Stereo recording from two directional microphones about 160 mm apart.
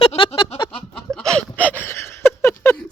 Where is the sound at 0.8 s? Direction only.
5° left (ahead or behind).